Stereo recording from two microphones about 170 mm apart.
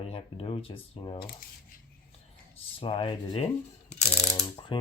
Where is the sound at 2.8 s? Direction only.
30° left (ahead or behind).